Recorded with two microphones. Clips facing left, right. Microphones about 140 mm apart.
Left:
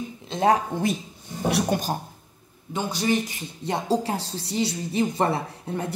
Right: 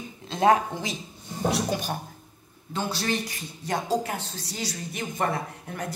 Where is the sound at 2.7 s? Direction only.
15° left (ahead or behind).